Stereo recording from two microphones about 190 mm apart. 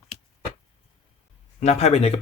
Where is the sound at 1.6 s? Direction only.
35° left (ahead or behind).